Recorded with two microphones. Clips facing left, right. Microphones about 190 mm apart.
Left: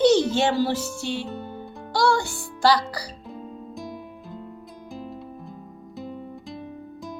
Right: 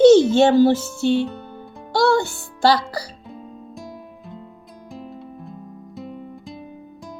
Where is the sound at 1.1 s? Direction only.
Centre (ahead or behind).